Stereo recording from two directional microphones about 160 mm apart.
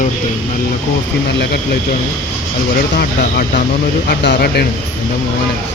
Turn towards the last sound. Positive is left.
turn(degrees=90)